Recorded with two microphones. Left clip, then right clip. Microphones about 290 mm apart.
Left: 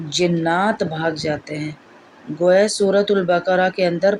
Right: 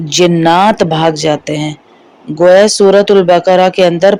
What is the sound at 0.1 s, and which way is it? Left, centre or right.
Speech, right.